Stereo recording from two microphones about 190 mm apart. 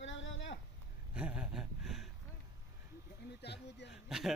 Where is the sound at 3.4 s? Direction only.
65° left (ahead or behind).